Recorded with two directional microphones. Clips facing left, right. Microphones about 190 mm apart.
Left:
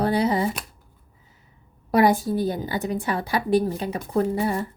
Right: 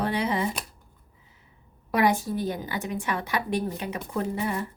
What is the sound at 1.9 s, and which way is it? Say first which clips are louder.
A woman's voice: left 5 dB; 35° left (ahead or behind).